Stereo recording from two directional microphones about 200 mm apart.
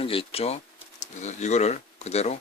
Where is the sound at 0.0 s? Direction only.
30° left (ahead or behind).